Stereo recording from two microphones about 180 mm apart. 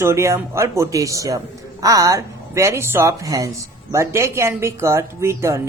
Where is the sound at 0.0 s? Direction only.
15° right (ahead or behind).